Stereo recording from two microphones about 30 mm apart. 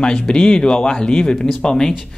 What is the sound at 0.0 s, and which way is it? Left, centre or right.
Speech, left.